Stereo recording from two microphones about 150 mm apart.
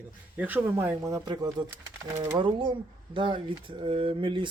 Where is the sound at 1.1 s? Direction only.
25° right (ahead or behind).